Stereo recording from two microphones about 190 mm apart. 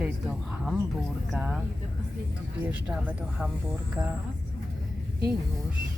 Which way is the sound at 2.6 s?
5° right (ahead or behind).